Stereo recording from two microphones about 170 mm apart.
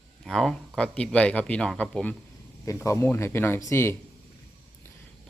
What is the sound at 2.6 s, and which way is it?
Speech, 15° left (ahead or behind).